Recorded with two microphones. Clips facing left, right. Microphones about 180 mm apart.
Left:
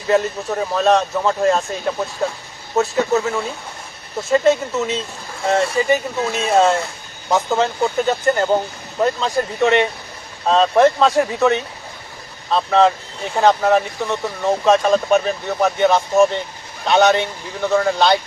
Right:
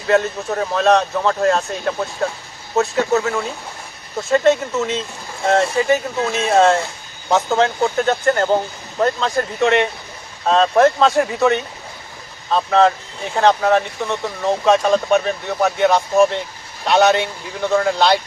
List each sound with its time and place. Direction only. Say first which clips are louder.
0.1 s speech: even; 5° left (ahead or behind)
5.5 s speech: right 1 dB; centre (ahead or behind)